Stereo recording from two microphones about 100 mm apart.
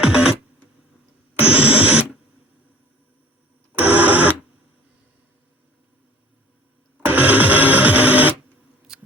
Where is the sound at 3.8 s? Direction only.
15° right (ahead or behind).